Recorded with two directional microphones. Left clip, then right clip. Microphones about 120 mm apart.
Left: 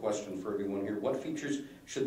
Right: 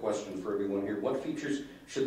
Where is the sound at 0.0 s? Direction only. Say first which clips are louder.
Right 1 dB; 20° right (ahead or behind).